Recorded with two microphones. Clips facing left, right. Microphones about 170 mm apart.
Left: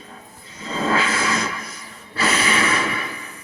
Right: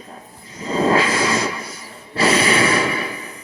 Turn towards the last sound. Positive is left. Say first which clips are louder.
# right 4 dB
turn(degrees=-35)  # may be behind; listen again after turning